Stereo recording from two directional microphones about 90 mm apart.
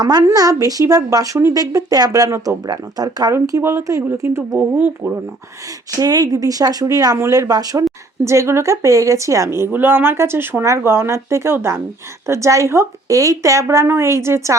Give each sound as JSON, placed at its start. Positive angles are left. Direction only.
{"t": 0.0, "sound": "a woman's voice", "side_deg": -45}
{"t": 2.6, "sound": "a woman's voice", "side_deg": -45}
{"t": 3.6, "sound": "speech", "side_deg": -25}
{"t": 6.0, "sound": "a woman's voice", "side_deg": -40}